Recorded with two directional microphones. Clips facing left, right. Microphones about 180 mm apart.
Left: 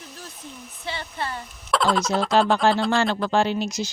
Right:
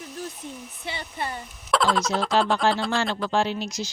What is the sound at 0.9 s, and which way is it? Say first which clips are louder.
Speech: left 1 dB; 15° right (ahead or behind).